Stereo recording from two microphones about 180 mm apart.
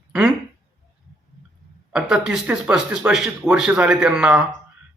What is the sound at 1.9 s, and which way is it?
Speech, 5° right (ahead or behind).